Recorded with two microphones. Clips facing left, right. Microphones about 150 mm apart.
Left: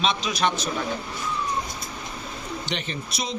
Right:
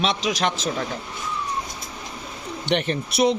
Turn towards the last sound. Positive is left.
turn(degrees=-65)  # may be behind; listen again after turning